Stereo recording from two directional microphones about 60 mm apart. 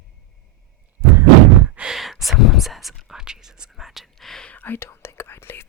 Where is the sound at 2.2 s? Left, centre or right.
Centre.